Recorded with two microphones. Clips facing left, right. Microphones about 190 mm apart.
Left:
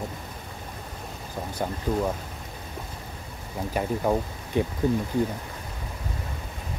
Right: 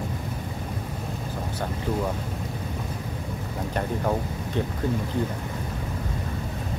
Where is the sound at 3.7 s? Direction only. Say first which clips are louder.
Left 2 dB; 10° left (ahead or behind).